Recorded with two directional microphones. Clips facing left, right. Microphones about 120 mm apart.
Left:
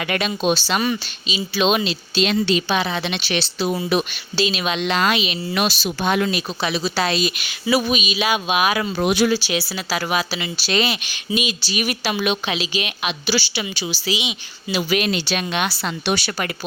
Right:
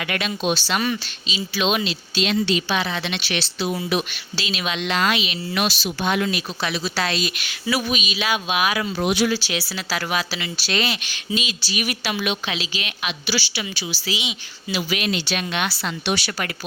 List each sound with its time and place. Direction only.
0.0 s speech: 30° left (ahead or behind)
0.8 s speech: 15° left (ahead or behind)
1.5 s speech: 30° left (ahead or behind)
2.6 s a woman's voice: 20° left (ahead or behind)
3.9 s speech: 40° left (ahead or behind)
4.4 s a woman's voice: 25° left (ahead or behind)
5.5 s speech: 40° left (ahead or behind)
6.6 s a woman's voice: 20° left (ahead or behind)
8.7 s speech: 45° left (ahead or behind)
9.3 s speech: 15° left (ahead or behind)
11.7 s a woman's voice: 35° left (ahead or behind); by 14.8 s 20° left (ahead or behind)
14.8 s speech: 45° left (ahead or behind)
15.4 s a woman's voice: 20° left (ahead or behind)
15.8 s speech: 40° left (ahead or behind)